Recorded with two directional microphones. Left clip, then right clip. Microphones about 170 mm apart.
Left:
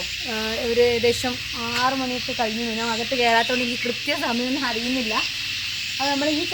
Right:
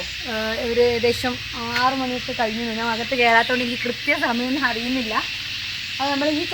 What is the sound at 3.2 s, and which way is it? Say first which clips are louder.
Speech: right 3 dB; 20° left (ahead or behind).